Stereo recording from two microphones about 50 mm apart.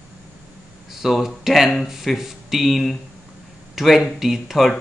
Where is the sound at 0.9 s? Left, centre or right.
Centre.